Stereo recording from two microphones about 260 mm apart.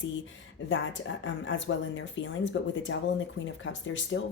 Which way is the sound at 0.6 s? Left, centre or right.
Left.